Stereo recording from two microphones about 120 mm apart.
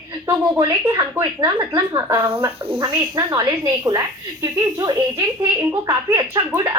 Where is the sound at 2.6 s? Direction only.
45° right (ahead or behind).